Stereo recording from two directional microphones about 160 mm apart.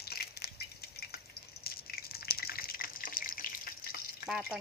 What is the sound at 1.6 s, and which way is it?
Water, 70° left (ahead or behind).